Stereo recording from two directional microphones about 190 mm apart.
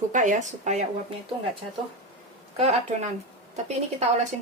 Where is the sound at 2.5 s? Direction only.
35° right (ahead or behind).